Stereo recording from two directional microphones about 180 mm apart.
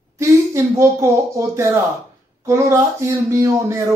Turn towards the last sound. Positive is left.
turn(degrees=-15)  # may be behind; listen again after turning